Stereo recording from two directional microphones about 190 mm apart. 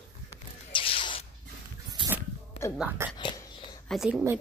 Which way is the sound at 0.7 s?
25° left (ahead or behind).